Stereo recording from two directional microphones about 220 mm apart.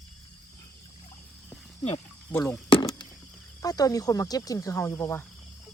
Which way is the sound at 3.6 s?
15° left (ahead or behind).